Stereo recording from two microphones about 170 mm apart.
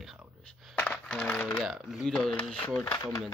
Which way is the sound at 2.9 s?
20° left (ahead or behind).